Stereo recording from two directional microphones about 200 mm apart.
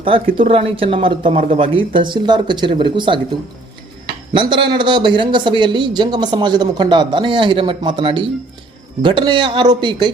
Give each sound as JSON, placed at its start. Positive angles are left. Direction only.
{"t": 0.3, "sound": "a man's voice", "side_deg": -25}
{"t": 4.3, "sound": "a man's voice", "side_deg": -25}